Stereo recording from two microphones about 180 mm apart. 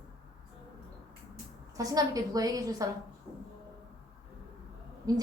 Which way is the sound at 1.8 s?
20° right (ahead or behind).